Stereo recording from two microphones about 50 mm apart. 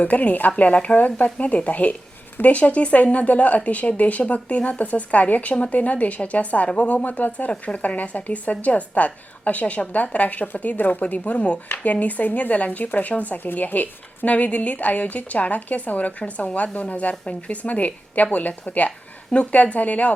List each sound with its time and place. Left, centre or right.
0.0 s speech: left